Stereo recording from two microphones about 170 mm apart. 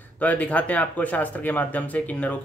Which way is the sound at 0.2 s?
10° left (ahead or behind).